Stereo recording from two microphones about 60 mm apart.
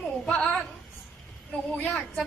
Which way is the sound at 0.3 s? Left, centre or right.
Centre.